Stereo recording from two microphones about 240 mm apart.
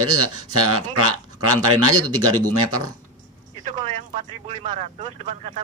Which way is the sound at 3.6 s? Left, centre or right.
Right.